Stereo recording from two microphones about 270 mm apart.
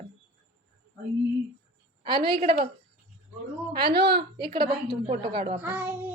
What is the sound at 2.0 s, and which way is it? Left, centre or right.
Speech, centre.